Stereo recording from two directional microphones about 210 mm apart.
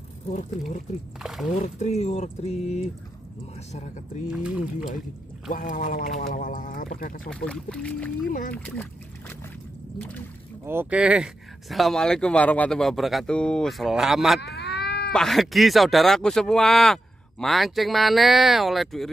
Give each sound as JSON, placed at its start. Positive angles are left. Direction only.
{"t": 1.2, "sound": "speech", "side_deg": 0}
{"t": 1.5, "sound": "speech", "side_deg": 35}
{"t": 4.3, "sound": "speech", "side_deg": -5}
{"t": 5.5, "sound": "speech", "side_deg": 40}
{"t": 7.2, "sound": "speech", "side_deg": 5}
{"t": 8.3, "sound": "speech", "side_deg": 40}
{"t": 9.9, "sound": "speech", "side_deg": 5}
{"t": 10.6, "sound": "speech", "side_deg": -10}
{"t": 14.4, "sound": "cat", "side_deg": 55}
{"t": 15.1, "sound": "speech", "side_deg": 0}